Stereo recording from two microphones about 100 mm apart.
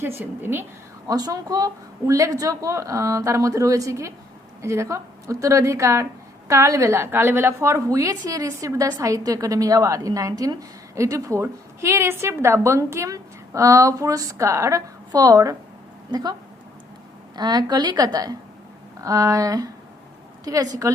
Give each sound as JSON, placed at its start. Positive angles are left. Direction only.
{"t": 0.0, "sound": "a woman's voice", "side_deg": -25}
{"t": 1.0, "sound": "a woman's voice", "side_deg": -40}
{"t": 17.3, "sound": "a woman's voice", "side_deg": -40}